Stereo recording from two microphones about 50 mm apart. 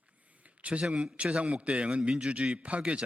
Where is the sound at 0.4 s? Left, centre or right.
Right.